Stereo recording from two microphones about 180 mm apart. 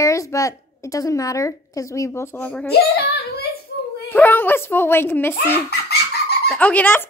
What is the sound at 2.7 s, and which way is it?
Speech, 60° left (ahead or behind).